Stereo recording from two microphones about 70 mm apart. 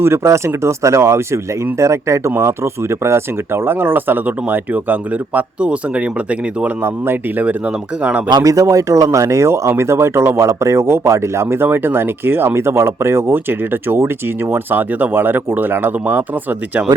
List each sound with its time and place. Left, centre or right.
0.0 s speech: right; by 6.7 s centre
6.8 s speech: right
7.4 s speech: centre
8.3 s speech: right